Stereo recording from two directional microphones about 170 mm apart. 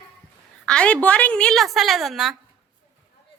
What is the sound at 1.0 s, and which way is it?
A woman's voice, 5° left (ahead or behind).